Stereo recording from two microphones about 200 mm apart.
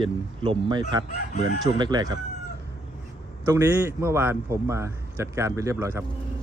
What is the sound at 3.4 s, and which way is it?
A man's voice, 10° right (ahead or behind).